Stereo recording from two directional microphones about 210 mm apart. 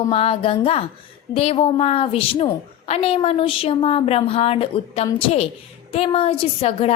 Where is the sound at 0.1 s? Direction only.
25° left (ahead or behind).